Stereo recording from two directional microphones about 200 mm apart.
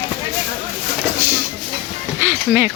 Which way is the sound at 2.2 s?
10° right (ahead or behind).